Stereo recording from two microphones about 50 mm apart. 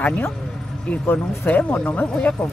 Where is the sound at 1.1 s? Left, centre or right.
Left.